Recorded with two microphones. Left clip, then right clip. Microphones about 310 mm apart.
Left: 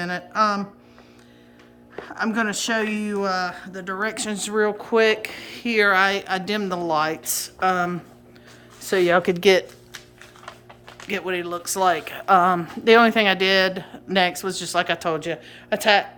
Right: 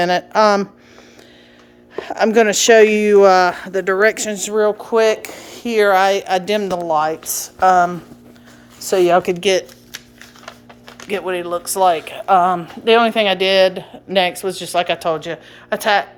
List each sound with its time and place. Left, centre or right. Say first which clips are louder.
0.3 s speech: right 7 dB; centre
2.0 s speech: right 11 dB; centre
9.0 s speech: right 5 dB; centre
10.4 s a sound: right 3 dB; right
11.1 s speech: right 5 dB; centre